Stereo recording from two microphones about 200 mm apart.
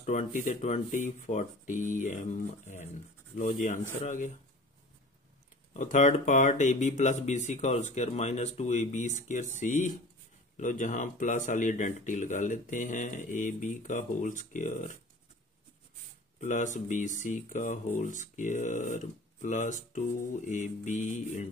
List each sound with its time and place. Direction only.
0.0 s speech: 40° left (ahead or behind)
5.7 s speech: 35° left (ahead or behind)
16.3 s speech: 40° left (ahead or behind)